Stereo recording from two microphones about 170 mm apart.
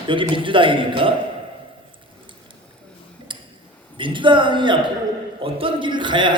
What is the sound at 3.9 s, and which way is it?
A man's voice, 30° right (ahead or behind).